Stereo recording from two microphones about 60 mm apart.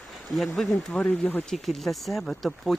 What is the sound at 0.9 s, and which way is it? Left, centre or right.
Speech, left.